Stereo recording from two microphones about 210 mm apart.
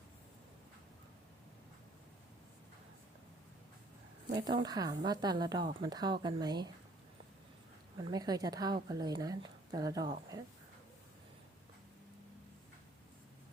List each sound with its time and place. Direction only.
4.3 s a woman's voice: 20° right (ahead or behind)
8.1 s a woman's voice: 20° right (ahead or behind)